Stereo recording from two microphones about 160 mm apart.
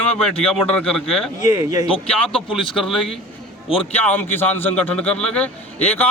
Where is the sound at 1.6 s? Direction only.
20° right (ahead or behind).